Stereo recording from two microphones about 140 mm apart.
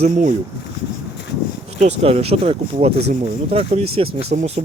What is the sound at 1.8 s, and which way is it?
Speech, 50° right (ahead or behind).